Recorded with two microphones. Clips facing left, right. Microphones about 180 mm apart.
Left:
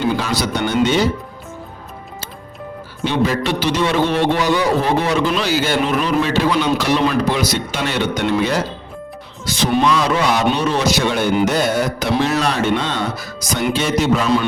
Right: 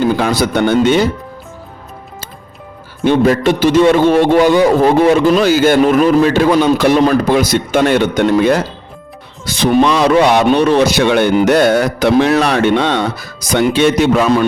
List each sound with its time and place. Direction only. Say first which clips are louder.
0.2 s a man's voice: right 7 dB; 55° right (ahead or behind)
3.0 s a man's voice: right 7 dB; 50° right (ahead or behind)
9.5 s a man's voice: right 5 dB; 60° right (ahead or behind)